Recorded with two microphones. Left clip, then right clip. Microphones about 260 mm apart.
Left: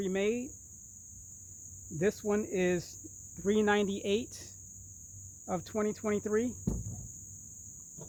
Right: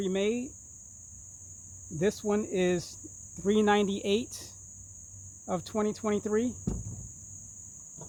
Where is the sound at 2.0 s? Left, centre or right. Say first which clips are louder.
Right 2 dB; right.